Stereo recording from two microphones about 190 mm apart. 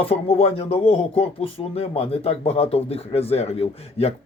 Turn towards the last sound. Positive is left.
turn(degrees=30)  # may be behind; listen again after turning